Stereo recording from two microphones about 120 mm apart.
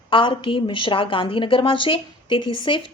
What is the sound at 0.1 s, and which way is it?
A woman's voice, 45° left (ahead or behind).